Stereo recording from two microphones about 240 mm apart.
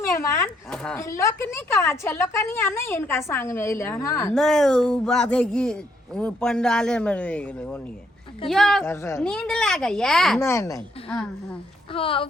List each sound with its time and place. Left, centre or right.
0.0 s a woman's voice: centre
11.9 s speech: left